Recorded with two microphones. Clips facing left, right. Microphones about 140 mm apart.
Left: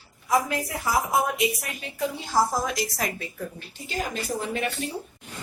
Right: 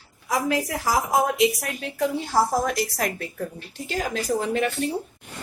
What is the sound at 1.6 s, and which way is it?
A woman's voice, 70° right (ahead or behind).